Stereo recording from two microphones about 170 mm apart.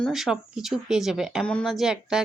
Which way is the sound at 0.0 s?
Centre (ahead or behind).